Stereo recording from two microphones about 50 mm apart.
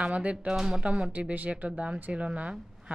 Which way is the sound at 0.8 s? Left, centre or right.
Right.